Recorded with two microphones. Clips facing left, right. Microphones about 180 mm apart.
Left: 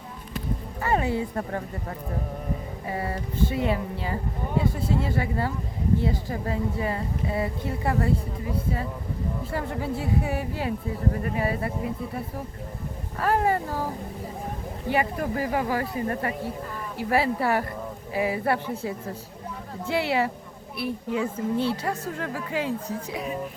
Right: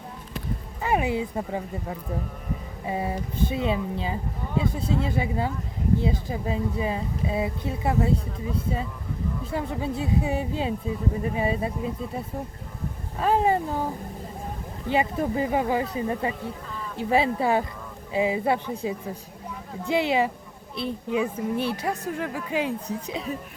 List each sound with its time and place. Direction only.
0.8 s a woman's voice: 15° right (ahead or behind)
2.8 s a woman's voice: 15° right (ahead or behind)
9.5 s speech: 20° right (ahead or behind)
13.1 s speech: 20° right (ahead or behind)
14.8 s a woman's voice: 20° right (ahead or behind)